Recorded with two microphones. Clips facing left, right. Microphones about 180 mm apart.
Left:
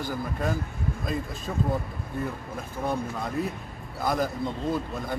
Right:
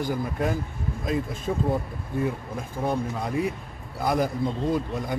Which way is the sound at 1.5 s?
15° right (ahead or behind).